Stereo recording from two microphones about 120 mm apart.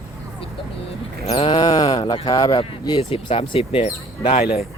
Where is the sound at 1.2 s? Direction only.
55° left (ahead or behind); by 2.1 s 35° left (ahead or behind).